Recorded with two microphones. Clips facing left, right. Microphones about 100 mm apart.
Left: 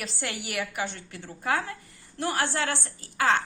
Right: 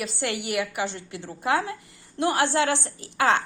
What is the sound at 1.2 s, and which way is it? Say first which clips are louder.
Speech: right 4 dB; 25° right (ahead or behind).